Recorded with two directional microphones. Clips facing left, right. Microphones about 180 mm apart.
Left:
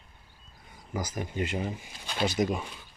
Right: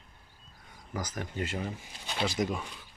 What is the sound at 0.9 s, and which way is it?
Speech, 10° left (ahead or behind).